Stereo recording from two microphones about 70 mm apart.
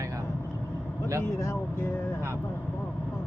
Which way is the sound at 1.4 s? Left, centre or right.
Left.